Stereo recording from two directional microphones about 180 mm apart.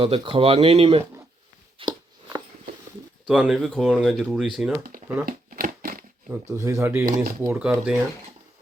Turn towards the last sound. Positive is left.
turn(degrees=-5)  # may be behind; listen again after turning